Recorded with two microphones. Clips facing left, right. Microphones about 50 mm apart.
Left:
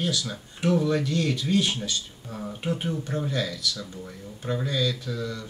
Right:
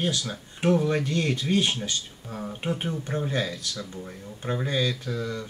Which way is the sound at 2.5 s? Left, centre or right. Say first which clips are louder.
Left 1 dB; right.